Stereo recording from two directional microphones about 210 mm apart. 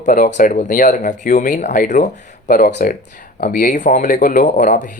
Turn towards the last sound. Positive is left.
turn(degrees=40)  # may be behind; listen again after turning